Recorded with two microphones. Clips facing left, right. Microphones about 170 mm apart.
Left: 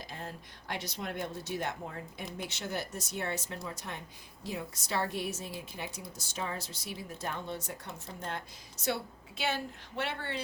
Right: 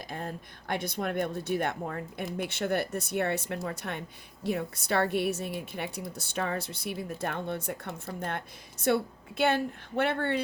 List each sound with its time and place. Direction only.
0.7 s speech: 55° right (ahead or behind)